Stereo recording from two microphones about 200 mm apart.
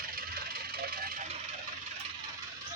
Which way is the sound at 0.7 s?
50° right (ahead or behind).